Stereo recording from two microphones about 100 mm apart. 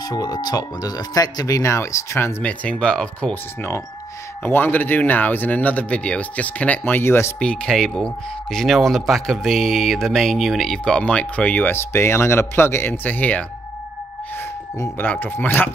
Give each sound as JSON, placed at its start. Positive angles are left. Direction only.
{"t": 0.1, "sound": "speech", "side_deg": 40}
{"t": 2.4, "sound": "speech", "side_deg": 15}
{"t": 4.5, "sound": "speech", "side_deg": 20}
{"t": 7.3, "sound": "speech", "side_deg": 10}
{"t": 15.0, "sound": "speech", "side_deg": 20}